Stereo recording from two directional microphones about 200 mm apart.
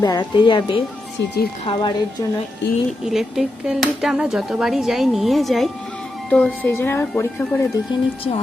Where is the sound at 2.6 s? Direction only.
65° left (ahead or behind).